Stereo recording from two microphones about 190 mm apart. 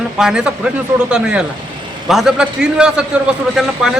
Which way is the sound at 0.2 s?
5° right (ahead or behind).